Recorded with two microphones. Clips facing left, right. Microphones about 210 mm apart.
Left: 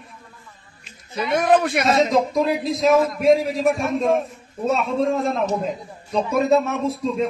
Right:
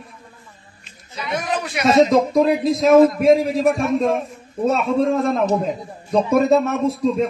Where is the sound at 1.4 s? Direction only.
55° left (ahead or behind).